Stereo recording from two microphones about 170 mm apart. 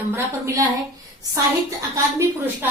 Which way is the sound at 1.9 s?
15° right (ahead or behind).